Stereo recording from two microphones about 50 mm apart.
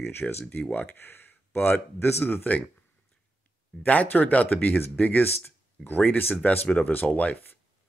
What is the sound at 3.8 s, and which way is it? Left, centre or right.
Speech, left.